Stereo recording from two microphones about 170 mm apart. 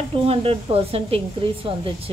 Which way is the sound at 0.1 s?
35° right (ahead or behind).